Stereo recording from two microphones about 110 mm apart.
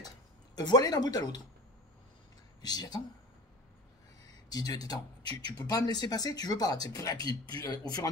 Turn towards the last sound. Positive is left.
turn(degrees=35)  # may be behind; listen again after turning